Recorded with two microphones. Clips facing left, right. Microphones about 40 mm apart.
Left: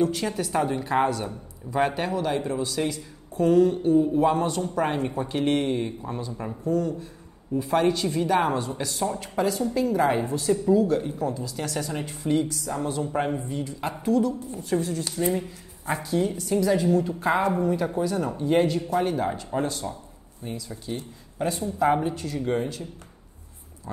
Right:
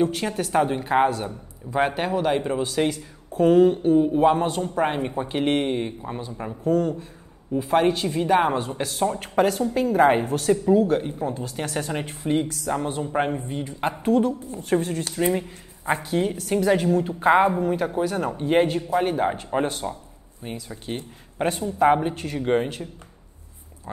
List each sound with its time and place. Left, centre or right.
0.0 s speech: right
6.6 s speech: right
7.5 s speech: right
10.5 s speech: right
11.3 s speech: right
12.4 s speech: right